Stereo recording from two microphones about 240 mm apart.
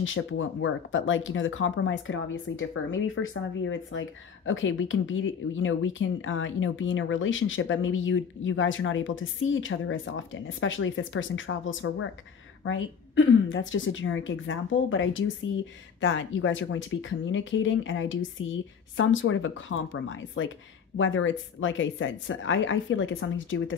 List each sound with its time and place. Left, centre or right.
0.0 s speech: left